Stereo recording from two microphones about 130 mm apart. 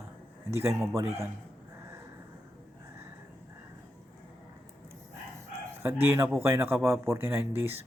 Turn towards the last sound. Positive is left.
turn(degrees=-15)  # may be behind; listen again after turning